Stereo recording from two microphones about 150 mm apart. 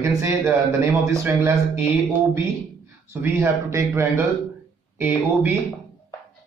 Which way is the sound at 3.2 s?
20° right (ahead or behind).